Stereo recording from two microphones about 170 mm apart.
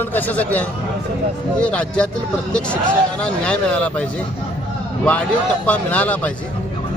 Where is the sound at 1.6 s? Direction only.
5° left (ahead or behind).